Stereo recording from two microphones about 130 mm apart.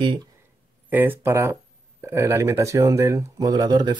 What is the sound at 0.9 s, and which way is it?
Speech, 15° right (ahead or behind).